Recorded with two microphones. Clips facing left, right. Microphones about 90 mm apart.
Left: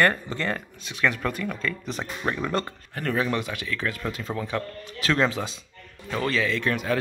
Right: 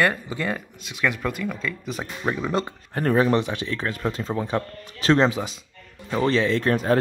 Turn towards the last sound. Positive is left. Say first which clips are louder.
# right 5 dB
turn(degrees=-35)  # may be behind; listen again after turning